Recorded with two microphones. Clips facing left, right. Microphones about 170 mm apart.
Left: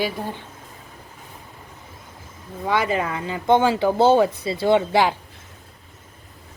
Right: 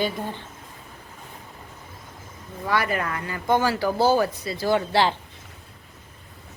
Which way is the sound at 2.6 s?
20° left (ahead or behind).